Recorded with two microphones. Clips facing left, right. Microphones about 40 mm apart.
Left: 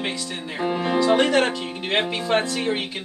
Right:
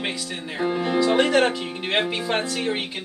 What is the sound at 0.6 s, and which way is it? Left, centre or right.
Speech, centre.